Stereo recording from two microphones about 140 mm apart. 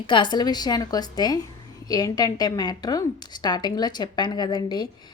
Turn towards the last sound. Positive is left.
turn(degrees=30)  # may be behind; listen again after turning